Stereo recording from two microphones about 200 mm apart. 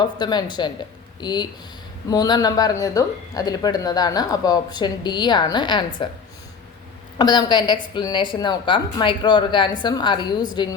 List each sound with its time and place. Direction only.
0.0 s speech: 20° left (ahead or behind)
7.2 s speech: 20° left (ahead or behind)